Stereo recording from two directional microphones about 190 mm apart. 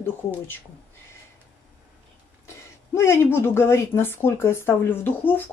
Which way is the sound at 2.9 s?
15° left (ahead or behind).